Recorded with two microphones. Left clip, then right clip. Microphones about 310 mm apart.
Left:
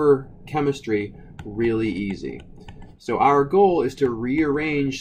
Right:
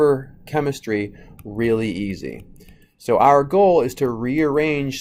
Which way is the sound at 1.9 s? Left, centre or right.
Right.